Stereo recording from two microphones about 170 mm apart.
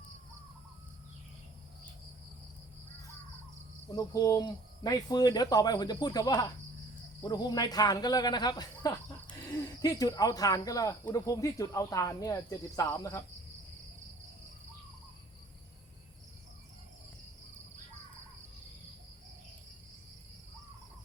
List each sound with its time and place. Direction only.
3.9 s speech: 20° left (ahead or behind)